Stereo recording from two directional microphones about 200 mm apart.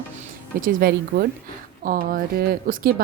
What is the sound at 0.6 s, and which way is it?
A woman's voice, 45° right (ahead or behind).